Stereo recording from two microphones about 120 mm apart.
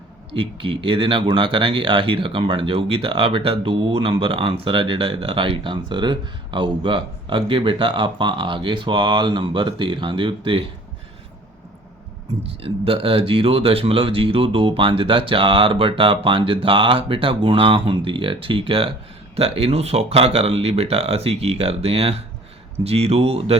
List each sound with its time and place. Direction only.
0.3 s speech: 45° right (ahead or behind)
12.4 s speech: 50° right (ahead or behind)